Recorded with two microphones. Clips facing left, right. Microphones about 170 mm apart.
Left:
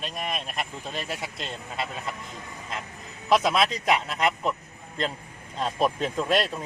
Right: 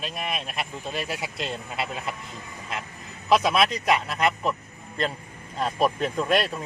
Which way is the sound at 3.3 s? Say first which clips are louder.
Right 1 dB; centre (ahead or behind).